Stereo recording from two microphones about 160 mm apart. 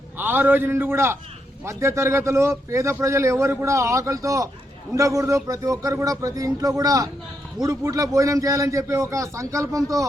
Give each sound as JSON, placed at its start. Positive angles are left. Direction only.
{"t": 0.2, "sound": "a man's voice", "side_deg": -10}